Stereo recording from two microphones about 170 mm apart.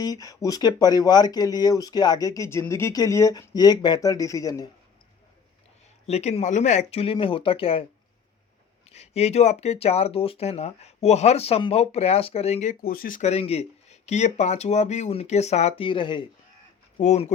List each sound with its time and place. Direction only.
0.0 s speech: 20° left (ahead or behind)
6.1 s speech: 40° left (ahead or behind)
8.9 s speech: 40° left (ahead or behind)
12.8 s speech: 60° left (ahead or behind); by 16.2 s 30° left (ahead or behind)
17.0 s speech: 45° left (ahead or behind)